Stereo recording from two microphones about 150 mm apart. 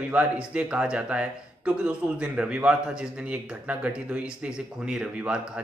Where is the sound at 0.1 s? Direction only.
10° right (ahead or behind).